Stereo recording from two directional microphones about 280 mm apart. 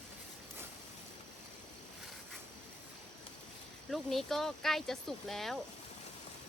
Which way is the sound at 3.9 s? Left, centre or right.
Centre.